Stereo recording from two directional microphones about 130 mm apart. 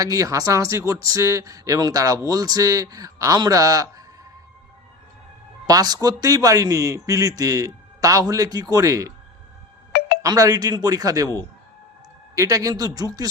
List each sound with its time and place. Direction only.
0.0 s speech: 25° right (ahead or behind)
5.6 s speech: 30° right (ahead or behind)
10.2 s speech: 25° right (ahead or behind)
12.4 s speech: 25° right (ahead or behind)